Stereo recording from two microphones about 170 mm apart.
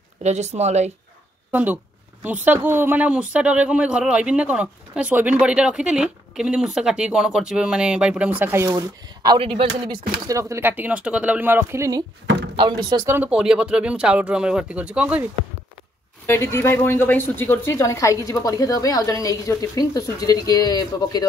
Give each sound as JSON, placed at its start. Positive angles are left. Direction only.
{"t": 0.2, "sound": "speech", "side_deg": -40}
{"t": 1.5, "sound": "speech", "side_deg": -10}
{"t": 12.5, "sound": "speech", "side_deg": -25}
{"t": 13.0, "sound": "speech", "side_deg": -10}
{"t": 16.3, "sound": "speech", "side_deg": 15}